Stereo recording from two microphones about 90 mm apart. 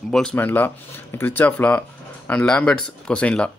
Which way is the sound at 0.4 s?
20° left (ahead or behind).